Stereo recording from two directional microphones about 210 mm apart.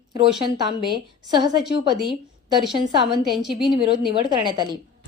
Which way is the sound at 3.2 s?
Centre (ahead or behind).